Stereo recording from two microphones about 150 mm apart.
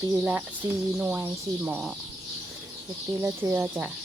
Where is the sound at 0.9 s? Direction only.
10° right (ahead or behind).